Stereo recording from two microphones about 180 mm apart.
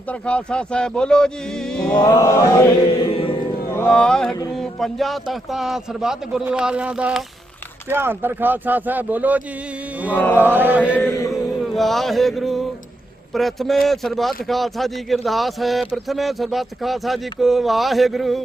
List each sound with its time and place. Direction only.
0.1 s speech: 5° left (ahead or behind)
2.0 s mantra: 20° left (ahead or behind)
2.8 s mantra: 30° left (ahead or behind)
3.7 s a sound: 10° left (ahead or behind)
4.5 s speech: centre (ahead or behind)
11.0 s chant: 15° left (ahead or behind)
11.6 s speech: centre (ahead or behind)